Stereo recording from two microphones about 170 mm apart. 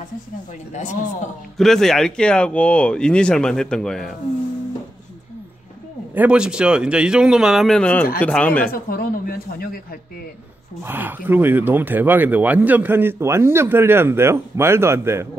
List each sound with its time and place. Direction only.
1.6 s speech: centre (ahead or behind)
6.1 s speech: 5° right (ahead or behind)
8.6 s speech: 60° left (ahead or behind)
10.8 s speech: 10° right (ahead or behind)